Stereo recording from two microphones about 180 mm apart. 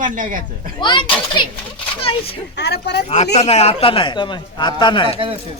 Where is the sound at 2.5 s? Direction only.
70° left (ahead or behind).